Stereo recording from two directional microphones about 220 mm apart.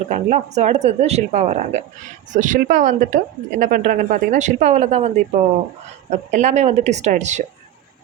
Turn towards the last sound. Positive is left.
turn(degrees=-30)  # may be behind; listen again after turning